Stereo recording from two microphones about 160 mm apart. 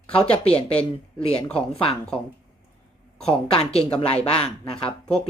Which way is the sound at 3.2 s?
40° left (ahead or behind).